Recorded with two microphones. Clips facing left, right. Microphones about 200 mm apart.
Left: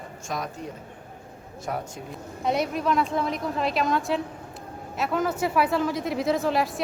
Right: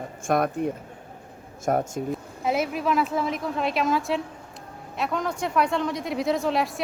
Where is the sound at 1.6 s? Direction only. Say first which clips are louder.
Right 8 dB; 45° right (ahead or behind).